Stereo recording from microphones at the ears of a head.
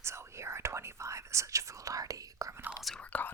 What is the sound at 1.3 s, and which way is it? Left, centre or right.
Speech, right.